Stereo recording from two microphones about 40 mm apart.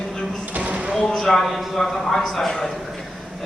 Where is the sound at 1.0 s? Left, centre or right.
Centre.